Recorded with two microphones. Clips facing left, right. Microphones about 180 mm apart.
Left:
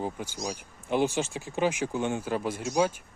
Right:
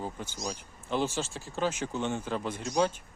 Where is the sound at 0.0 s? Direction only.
10° left (ahead or behind).